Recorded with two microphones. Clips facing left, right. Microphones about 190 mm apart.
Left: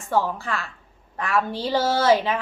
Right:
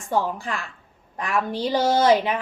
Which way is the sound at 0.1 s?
15° right (ahead or behind).